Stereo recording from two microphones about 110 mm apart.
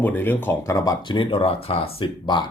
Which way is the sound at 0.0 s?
20° left (ahead or behind).